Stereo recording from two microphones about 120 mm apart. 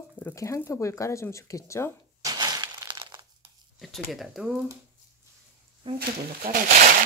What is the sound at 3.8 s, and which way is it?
Speech, centre (ahead or behind).